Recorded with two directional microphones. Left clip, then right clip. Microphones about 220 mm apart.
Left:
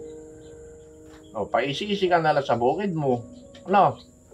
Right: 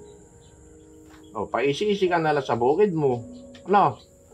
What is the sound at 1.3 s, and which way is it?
Speech, 20° right (ahead or behind).